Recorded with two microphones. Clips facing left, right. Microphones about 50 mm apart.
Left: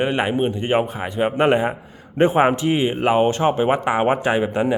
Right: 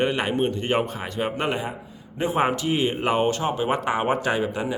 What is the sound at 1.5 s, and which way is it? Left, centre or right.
Speech, left.